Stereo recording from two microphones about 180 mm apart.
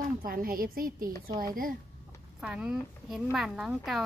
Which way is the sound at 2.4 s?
5° right (ahead or behind).